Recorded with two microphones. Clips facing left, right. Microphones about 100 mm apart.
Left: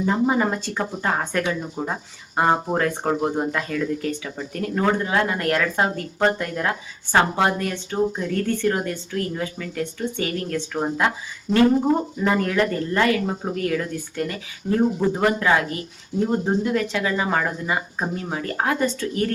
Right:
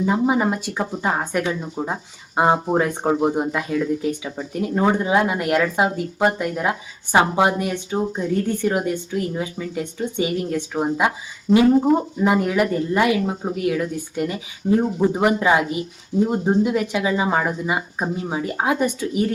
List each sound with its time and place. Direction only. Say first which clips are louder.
0.0 s speech: right 1 dB; 10° right (ahead or behind)